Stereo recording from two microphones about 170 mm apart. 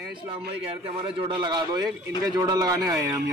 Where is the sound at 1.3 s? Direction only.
25° right (ahead or behind).